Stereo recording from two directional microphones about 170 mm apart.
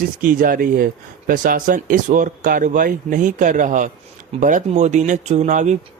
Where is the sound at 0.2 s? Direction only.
55° right (ahead or behind).